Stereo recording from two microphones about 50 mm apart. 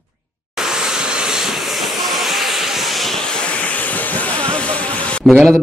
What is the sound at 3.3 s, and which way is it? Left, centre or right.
Vehicle, left.